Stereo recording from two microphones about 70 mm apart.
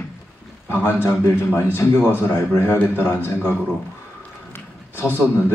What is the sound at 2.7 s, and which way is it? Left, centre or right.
Speech, left.